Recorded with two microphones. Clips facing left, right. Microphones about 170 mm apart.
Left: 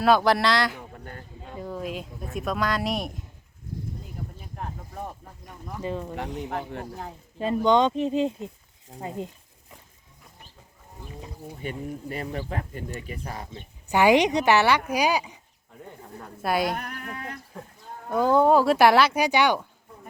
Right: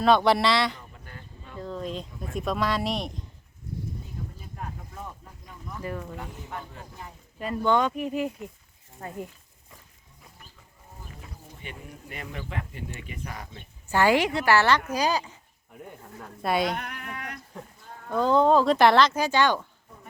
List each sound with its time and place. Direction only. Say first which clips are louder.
0.0 s speech: even; 5° left (ahead or behind)
0.9 s a sound: left 5 dB; 50° left (ahead or behind)
1.5 s speech: left 1 dB; 10° left (ahead or behind)
5.8 s speech: left 4 dB; 20° left (ahead or behind)
6.4 s speech: left 7 dB; 65° left (ahead or behind)
7.3 s speech: left 4 dB; 25° left (ahead or behind)
11.6 s speech: left 10 dB; 40° left (ahead or behind)
13.9 s speech: left 3 dB; 15° left (ahead or behind)
16.2 s speech: even; centre (ahead or behind)
16.7 s speech: left 1 dB; 40° left (ahead or behind)
18.1 s speech: left 1 dB; 10° left (ahead or behind)